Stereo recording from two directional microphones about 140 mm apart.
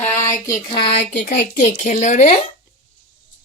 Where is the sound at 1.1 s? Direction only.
65° left (ahead or behind).